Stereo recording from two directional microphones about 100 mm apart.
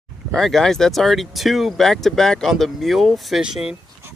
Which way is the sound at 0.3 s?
Centre (ahead or behind).